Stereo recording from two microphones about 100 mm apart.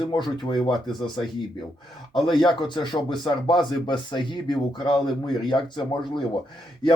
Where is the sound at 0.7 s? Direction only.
Centre (ahead or behind).